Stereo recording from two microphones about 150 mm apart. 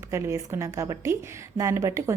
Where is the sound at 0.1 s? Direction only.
20° right (ahead or behind).